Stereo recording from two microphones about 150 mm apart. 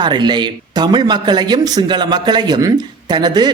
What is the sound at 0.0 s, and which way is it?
Speech, 30° right (ahead or behind).